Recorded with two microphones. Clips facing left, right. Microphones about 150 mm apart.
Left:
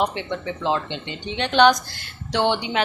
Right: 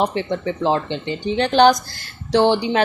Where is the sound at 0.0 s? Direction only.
35° right (ahead or behind).